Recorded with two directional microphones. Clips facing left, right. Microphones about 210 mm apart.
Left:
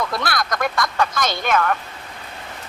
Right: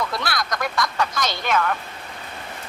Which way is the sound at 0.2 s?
50° left (ahead or behind).